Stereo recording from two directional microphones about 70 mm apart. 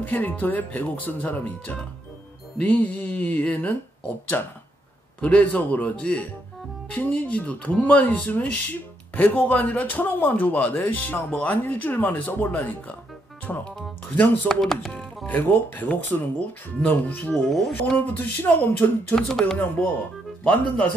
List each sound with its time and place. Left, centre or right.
0.0 s a man's voice: left
14.1 s a man's voice: left
14.5 s speech: centre
15.2 s a man's voice: left
17.3 s speech: centre
17.8 s a man's voice: left
19.1 s speech: centre
20.4 s a man's voice: left